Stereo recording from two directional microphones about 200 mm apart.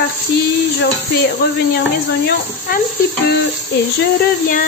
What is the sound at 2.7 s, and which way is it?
Speech, 50° left (ahead or behind).